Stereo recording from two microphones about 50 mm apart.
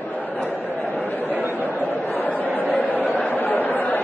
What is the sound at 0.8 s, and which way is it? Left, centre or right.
Chatter, left.